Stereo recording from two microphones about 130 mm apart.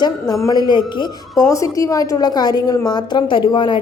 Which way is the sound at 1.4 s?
25° left (ahead or behind).